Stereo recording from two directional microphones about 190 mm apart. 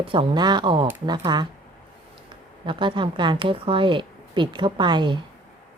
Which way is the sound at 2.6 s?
25° right (ahead or behind).